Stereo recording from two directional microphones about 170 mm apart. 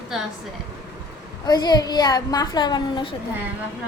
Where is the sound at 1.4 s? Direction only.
25° left (ahead or behind).